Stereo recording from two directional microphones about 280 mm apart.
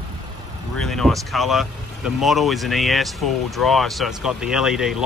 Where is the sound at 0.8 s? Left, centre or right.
Centre.